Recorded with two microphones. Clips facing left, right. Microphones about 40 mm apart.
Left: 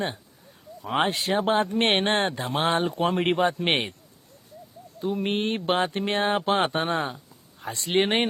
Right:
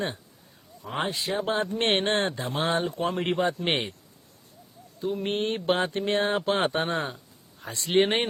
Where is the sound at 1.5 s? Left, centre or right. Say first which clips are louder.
Left 3 dB; left.